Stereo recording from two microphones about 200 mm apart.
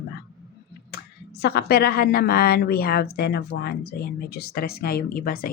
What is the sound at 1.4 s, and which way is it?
A woman's voice, 55° left (ahead or behind).